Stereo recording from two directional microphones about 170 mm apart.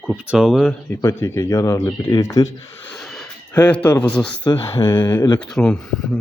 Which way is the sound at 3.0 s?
Centre (ahead or behind).